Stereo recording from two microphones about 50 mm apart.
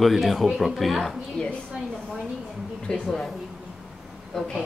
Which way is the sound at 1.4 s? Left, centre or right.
Centre.